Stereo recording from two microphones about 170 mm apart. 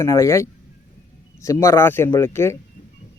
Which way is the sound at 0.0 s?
20° left (ahead or behind).